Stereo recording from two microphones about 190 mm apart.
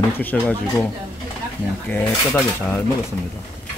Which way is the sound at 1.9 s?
10° left (ahead or behind).